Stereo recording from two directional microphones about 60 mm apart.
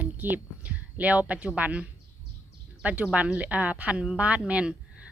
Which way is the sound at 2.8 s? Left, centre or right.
Right.